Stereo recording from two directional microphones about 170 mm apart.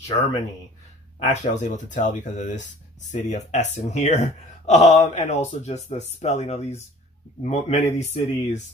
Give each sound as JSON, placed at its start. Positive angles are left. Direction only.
{"t": 0.0, "sound": "speech", "side_deg": 40}